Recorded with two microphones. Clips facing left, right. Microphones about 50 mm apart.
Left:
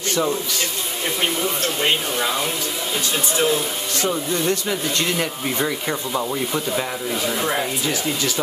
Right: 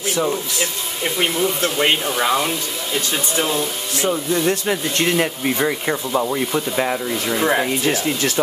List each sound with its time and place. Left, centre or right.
0.0 s speech: centre
4.6 s speech: right
5.1 s speech: centre
7.4 s speech: centre
7.8 s speech: right